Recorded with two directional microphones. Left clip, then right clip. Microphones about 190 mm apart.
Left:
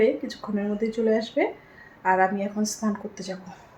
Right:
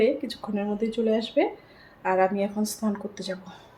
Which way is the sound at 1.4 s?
5° right (ahead or behind).